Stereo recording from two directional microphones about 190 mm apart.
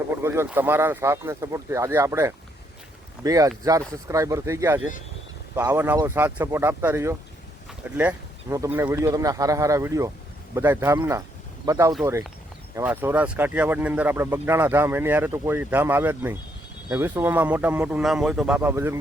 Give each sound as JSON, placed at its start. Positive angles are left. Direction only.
{"t": 0.2, "sound": "speech", "side_deg": -15}